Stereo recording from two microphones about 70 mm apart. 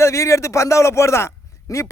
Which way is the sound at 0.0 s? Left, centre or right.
Left.